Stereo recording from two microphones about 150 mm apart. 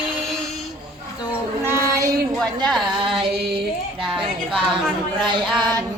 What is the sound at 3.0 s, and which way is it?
Music, 35° right (ahead or behind).